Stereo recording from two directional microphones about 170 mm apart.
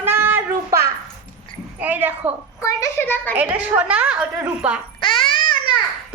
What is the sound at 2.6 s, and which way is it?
Speech, 15° left (ahead or behind).